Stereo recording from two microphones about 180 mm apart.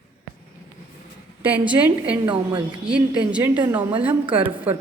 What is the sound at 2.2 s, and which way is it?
Speech, 25° right (ahead or behind).